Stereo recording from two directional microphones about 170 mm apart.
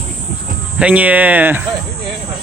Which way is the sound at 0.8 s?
10° right (ahead or behind).